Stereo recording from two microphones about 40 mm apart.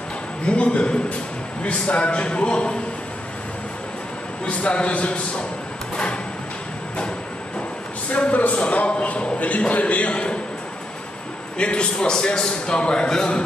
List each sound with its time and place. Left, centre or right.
0.5 s a man's voice: left
4.5 s a man's voice: left
8.3 s a man's voice: left
11.5 s a man's voice: left